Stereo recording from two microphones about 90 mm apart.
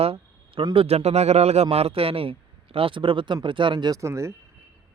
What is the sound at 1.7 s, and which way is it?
Speech, 90° right.